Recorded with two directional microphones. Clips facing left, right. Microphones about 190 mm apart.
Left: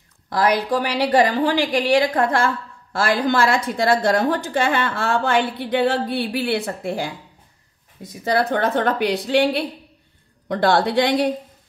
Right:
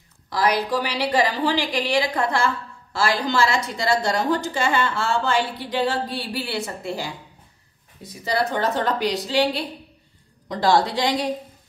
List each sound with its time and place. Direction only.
0.3 s a woman's voice: 50° left (ahead or behind)
8.2 s a woman's voice: 55° left (ahead or behind)